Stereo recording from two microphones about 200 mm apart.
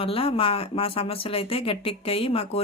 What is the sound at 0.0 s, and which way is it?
Speech, 30° left (ahead or behind).